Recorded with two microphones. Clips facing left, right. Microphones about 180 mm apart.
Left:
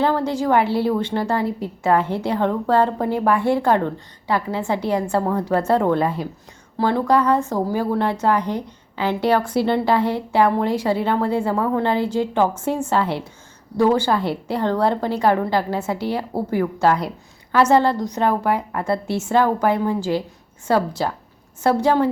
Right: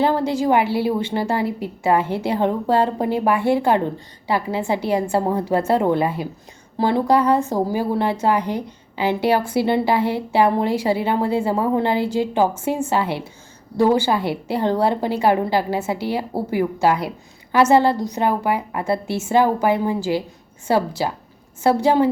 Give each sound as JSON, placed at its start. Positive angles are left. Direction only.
{"t": 0.0, "sound": "a woman's voice", "side_deg": -10}
{"t": 3.2, "sound": "a woman's voice", "side_deg": -25}
{"t": 4.3, "sound": "a woman's voice", "side_deg": -10}